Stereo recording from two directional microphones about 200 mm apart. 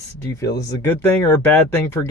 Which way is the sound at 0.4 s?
55° left (ahead or behind).